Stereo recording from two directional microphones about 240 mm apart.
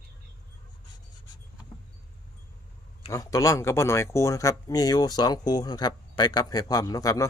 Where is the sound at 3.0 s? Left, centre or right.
Centre.